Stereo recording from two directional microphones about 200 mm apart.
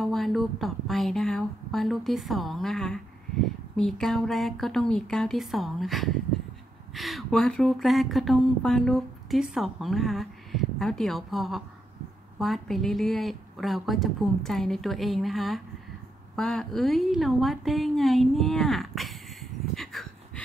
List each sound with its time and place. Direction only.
0.0 s a woman's voice: centre (ahead or behind)